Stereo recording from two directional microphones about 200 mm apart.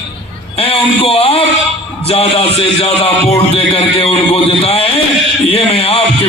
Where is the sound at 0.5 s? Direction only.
30° left (ahead or behind).